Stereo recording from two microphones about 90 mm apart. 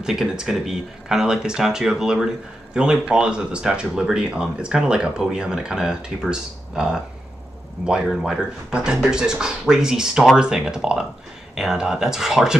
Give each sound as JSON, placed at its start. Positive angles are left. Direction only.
{"t": 0.0, "sound": "speech", "side_deg": -5}
{"t": 8.1, "sound": "speech", "side_deg": -5}